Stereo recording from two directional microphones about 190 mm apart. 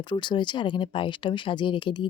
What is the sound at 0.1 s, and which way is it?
Speech, 25° left (ahead or behind).